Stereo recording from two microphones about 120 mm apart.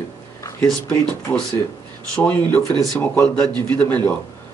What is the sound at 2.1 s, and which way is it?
Speech, 10° left (ahead or behind).